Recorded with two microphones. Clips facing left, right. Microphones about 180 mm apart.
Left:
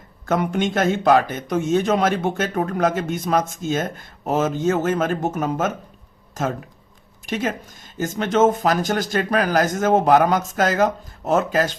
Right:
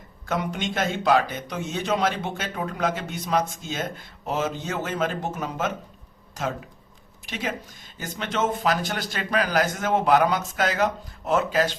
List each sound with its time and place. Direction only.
0.3 s a man's voice: 50° left (ahead or behind)
7.3 s a man's voice: 50° left (ahead or behind)